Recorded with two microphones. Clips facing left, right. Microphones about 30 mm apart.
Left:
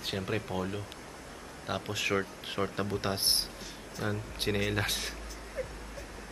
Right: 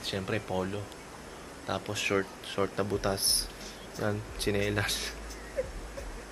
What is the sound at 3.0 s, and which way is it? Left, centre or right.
Speech, left.